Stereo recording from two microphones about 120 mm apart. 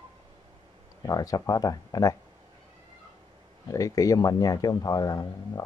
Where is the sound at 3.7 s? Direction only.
30° left (ahead or behind).